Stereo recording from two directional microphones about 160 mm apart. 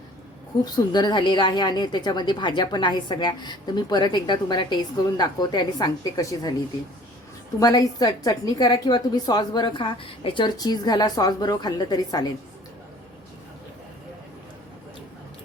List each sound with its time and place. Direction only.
0.6 s a woman's voice: 25° left (ahead or behind)
7.6 s a woman's voice: 25° left (ahead or behind)